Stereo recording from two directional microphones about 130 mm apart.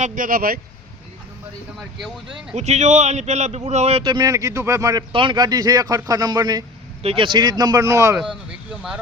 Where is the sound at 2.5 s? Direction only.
60° right (ahead or behind).